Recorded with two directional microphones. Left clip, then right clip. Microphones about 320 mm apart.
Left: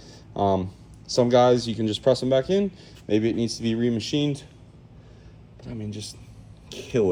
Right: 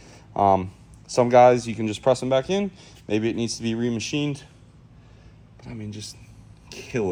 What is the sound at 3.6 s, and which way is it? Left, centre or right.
Speech, right.